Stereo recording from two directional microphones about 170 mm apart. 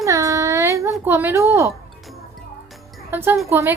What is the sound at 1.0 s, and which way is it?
Speech, 10° right (ahead or behind).